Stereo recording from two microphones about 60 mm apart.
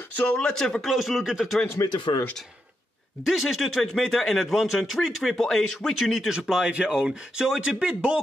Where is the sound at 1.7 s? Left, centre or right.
Left.